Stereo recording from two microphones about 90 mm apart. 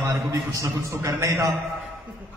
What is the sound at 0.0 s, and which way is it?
A man's voice, 35° right (ahead or behind).